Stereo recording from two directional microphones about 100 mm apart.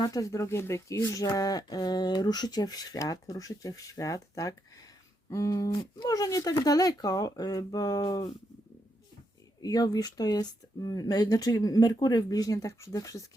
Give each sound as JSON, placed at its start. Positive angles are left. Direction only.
{"t": 0.0, "sound": "speech", "side_deg": 35}
{"t": 5.7, "sound": "speech", "side_deg": 45}
{"t": 9.6, "sound": "speech", "side_deg": 40}